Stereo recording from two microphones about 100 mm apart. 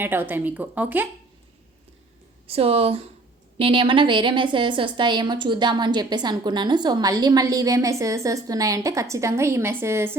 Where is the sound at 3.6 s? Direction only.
60° right (ahead or behind).